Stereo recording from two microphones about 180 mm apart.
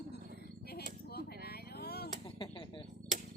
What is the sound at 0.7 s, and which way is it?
Chop, 60° left (ahead or behind).